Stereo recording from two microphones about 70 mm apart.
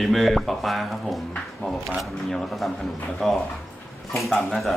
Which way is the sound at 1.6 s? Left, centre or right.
Centre.